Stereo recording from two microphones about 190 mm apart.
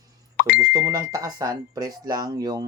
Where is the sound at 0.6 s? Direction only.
20° right (ahead or behind).